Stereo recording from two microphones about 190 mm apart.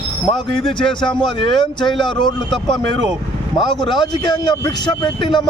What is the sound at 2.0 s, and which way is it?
A man's voice, 25° left (ahead or behind).